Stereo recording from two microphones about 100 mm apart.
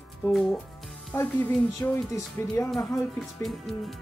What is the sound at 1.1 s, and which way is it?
Speech, 20° left (ahead or behind).